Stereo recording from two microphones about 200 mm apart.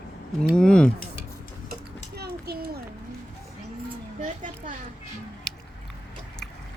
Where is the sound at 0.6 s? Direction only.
5° left (ahead or behind).